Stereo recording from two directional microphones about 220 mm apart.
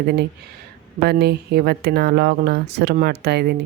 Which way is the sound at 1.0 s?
45° right (ahead or behind).